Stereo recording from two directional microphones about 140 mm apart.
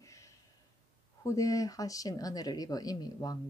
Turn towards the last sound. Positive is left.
turn(degrees=30)  # may be behind; listen again after turning